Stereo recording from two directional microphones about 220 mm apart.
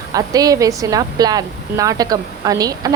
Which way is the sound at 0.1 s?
15° right (ahead or behind).